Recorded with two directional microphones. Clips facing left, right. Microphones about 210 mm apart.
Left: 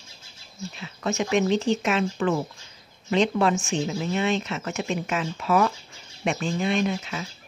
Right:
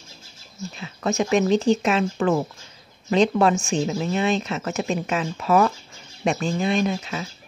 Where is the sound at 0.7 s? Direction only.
40° right (ahead or behind).